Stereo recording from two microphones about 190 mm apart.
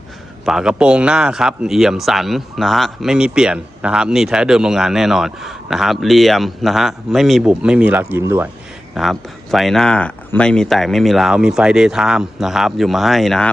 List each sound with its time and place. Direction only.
0.4 s speech: 5° right (ahead or behind)
9.0 s speech: centre (ahead or behind)